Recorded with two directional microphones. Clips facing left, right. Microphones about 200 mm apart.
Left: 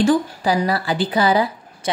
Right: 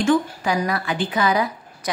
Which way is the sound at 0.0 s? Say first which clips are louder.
Left 2 dB; 35° left (ahead or behind).